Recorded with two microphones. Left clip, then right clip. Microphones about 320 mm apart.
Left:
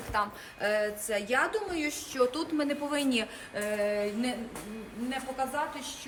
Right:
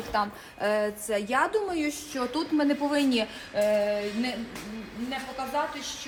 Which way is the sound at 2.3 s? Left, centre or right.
Right.